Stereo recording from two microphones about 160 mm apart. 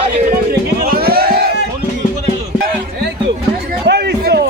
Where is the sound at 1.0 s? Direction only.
75° right (ahead or behind).